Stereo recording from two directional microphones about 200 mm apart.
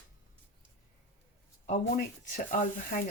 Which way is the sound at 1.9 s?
45° left (ahead or behind).